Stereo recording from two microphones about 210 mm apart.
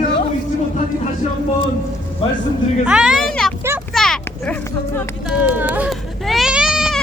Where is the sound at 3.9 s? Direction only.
Centre (ahead or behind).